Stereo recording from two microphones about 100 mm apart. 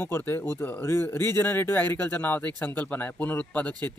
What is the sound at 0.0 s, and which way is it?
Speech, 20° left (ahead or behind).